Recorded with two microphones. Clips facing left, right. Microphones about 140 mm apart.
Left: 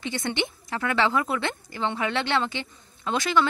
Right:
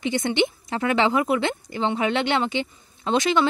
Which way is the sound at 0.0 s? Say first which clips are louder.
Right 6 dB; 15° right (ahead or behind).